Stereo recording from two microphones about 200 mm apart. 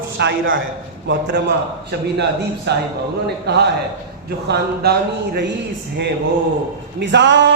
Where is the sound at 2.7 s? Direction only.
55° right (ahead or behind).